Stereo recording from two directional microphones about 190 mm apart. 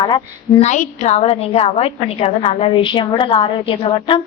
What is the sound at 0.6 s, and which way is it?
A woman's voice, 40° left (ahead or behind).